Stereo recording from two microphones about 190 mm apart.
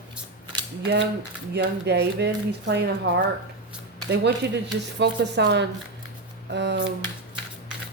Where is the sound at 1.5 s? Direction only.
60° right (ahead or behind).